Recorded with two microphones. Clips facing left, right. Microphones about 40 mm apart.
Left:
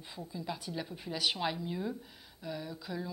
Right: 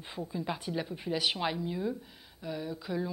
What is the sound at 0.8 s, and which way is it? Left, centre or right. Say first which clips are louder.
A woman's voice: right 4 dB; centre.